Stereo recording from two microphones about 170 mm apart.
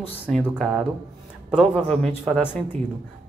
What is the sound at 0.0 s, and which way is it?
Speech, 5° left (ahead or behind).